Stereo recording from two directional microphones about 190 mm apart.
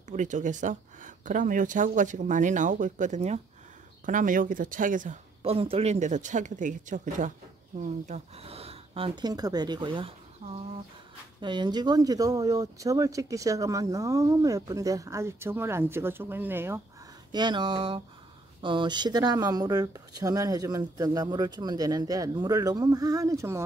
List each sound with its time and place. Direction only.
0.1 s speech: 40° right (ahead or behind); by 16.8 s 10° right (ahead or behind)
17.3 s speech: 25° right (ahead or behind)